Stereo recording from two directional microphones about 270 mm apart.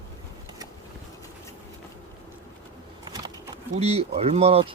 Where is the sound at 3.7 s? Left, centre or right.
Right.